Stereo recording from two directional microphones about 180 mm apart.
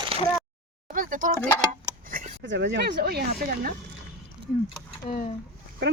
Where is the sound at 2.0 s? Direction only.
50° right (ahead or behind).